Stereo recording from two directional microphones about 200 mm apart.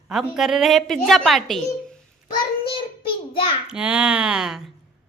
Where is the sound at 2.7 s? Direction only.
25° left (ahead or behind).